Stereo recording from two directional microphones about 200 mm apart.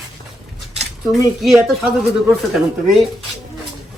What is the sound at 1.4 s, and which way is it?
Speech, centre (ahead or behind).